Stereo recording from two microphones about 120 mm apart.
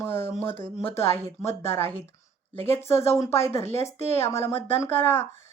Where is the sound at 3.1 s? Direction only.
25° left (ahead or behind).